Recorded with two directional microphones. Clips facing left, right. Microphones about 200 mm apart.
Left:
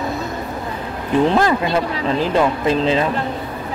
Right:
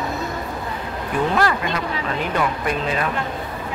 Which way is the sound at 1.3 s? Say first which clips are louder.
Left 5 dB; 30° left (ahead or behind).